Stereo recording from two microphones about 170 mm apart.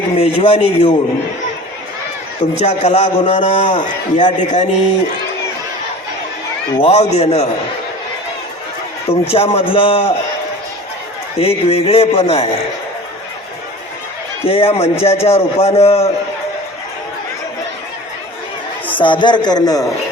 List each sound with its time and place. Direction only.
0.2 s speech: 35° left (ahead or behind)
2.4 s a man's voice: 40° left (ahead or behind)
6.8 s speech: 40° left (ahead or behind)
9.0 s speech: 35° left (ahead or behind)
11.3 s speech: 35° left (ahead or behind)
14.4 s speech: 35° left (ahead or behind)
18.9 s a man's voice: 30° left (ahead or behind)